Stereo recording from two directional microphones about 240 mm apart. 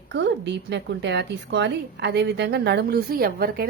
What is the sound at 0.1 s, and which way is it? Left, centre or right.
A woman's voice, right.